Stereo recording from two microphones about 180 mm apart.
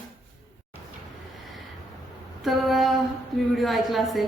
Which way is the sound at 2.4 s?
Centre (ahead or behind).